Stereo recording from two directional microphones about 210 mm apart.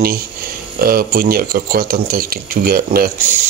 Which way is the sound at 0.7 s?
45° right (ahead or behind).